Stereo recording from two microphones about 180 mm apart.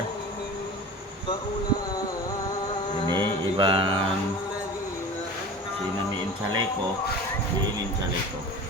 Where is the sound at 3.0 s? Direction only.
25° right (ahead or behind).